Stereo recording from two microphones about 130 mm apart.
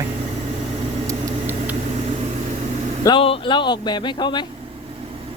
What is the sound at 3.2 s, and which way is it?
Speech, 40° left (ahead or behind).